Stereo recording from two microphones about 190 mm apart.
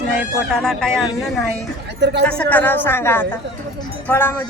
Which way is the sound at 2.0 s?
65° right (ahead or behind).